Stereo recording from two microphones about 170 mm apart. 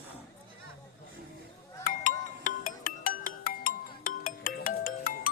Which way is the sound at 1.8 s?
50° left (ahead or behind).